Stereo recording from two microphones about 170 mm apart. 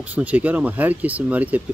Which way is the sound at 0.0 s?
10° right (ahead or behind).